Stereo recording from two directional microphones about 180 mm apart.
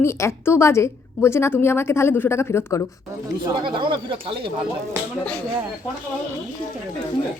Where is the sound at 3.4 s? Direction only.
25° right (ahead or behind).